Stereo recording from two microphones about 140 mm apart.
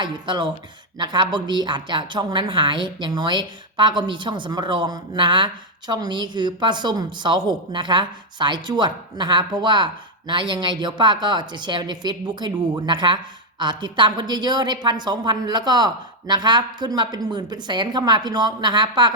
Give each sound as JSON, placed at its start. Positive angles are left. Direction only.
{"t": 0.0, "sound": "a woman's voice", "side_deg": -35}